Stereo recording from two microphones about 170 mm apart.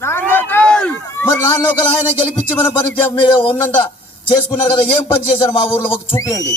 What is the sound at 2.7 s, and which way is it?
Speech, 30° left (ahead or behind).